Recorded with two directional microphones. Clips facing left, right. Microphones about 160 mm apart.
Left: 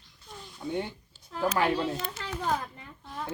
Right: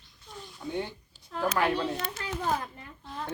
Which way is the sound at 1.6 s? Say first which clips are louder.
Left 1 dB; centre (ahead or behind).